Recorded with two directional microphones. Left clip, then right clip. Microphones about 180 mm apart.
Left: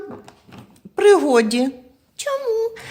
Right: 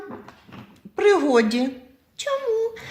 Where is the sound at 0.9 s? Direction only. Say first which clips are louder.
Left 4 dB; 45° left (ahead or behind).